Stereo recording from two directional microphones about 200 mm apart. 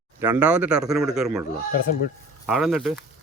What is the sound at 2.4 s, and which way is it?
Speech, centre (ahead or behind).